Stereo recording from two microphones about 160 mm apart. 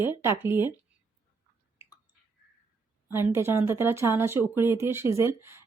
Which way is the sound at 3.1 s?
15° right (ahead or behind).